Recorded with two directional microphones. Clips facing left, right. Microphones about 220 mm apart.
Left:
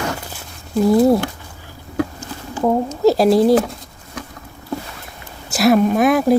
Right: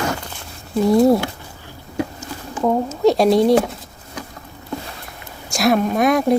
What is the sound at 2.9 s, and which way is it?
Speech, centre (ahead or behind).